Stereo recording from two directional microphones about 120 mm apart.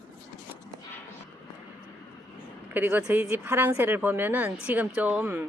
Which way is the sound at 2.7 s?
15° right (ahead or behind).